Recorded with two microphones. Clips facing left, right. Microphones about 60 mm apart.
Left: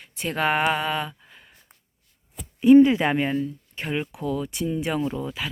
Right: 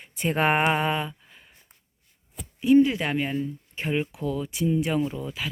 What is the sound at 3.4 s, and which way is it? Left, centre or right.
Speech, centre.